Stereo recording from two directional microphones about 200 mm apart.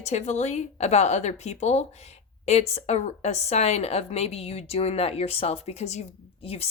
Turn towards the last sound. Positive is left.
turn(degrees=30)  # may be behind; listen again after turning